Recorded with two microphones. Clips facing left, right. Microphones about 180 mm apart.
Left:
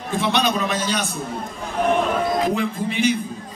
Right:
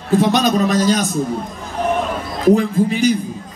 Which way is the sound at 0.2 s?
40° right (ahead or behind).